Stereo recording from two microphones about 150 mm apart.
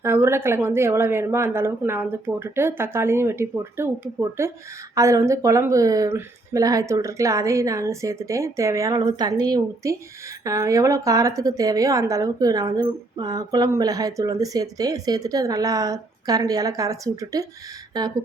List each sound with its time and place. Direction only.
0.0 s a woman's voice: 15° right (ahead or behind)